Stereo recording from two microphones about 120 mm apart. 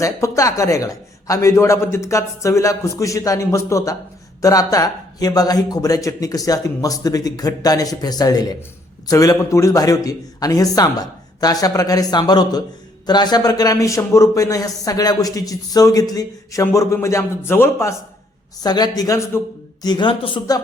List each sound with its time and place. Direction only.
0.0 s a man's voice: 25° left (ahead or behind)
18.6 s speech: 35° left (ahead or behind)
19.8 s a woman's voice: 40° left (ahead or behind)